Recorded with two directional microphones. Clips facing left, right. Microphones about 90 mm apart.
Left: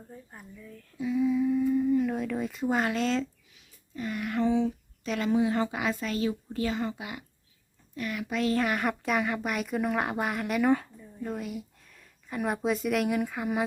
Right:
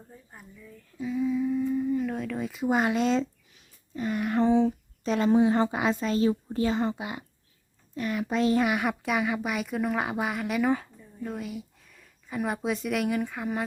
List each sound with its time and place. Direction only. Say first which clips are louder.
0.1 s speech: left 3 dB; centre (ahead or behind)
2.6 s speech: right 3 dB; 15° right (ahead or behind); by 13.7 s 5° left (ahead or behind)